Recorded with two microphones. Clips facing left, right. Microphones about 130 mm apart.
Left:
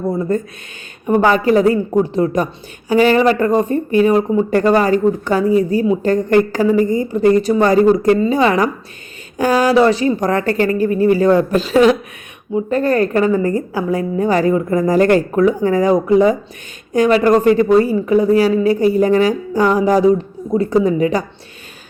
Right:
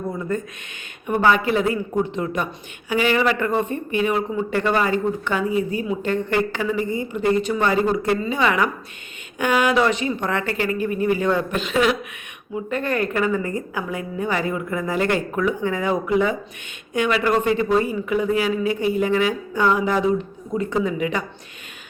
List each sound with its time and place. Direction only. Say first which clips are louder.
0.1 s speech: left 8 dB; 35° left (ahead or behind)